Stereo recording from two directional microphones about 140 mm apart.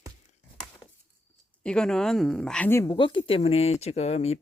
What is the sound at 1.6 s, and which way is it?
Speech, 5° left (ahead or behind).